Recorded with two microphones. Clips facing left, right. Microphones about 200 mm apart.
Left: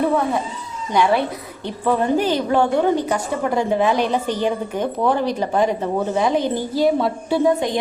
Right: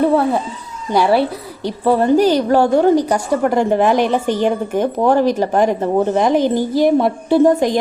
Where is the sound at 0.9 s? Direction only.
35° right (ahead or behind).